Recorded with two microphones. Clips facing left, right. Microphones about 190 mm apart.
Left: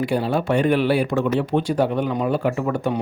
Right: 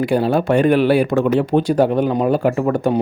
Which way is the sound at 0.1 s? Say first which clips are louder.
Right 5 dB; 45° right (ahead or behind).